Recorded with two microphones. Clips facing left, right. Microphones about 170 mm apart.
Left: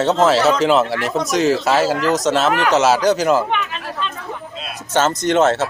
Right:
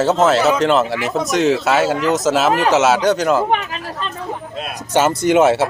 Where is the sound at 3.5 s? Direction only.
40° right (ahead or behind).